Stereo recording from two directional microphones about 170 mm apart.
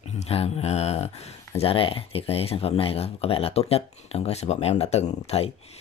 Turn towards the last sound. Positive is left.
turn(degrees=40)  # may be behind; listen again after turning